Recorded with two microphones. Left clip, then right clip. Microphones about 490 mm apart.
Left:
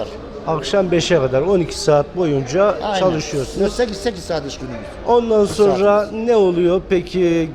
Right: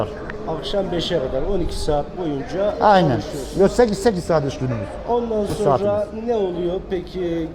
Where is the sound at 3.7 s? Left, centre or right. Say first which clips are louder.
Right 3 dB; right.